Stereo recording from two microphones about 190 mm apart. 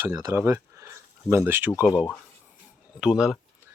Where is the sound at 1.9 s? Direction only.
20° left (ahead or behind).